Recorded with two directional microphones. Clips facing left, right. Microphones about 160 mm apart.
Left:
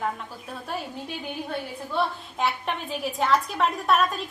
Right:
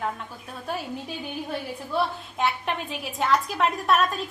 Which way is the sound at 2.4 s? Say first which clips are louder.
Right 1 dB; centre (ahead or behind).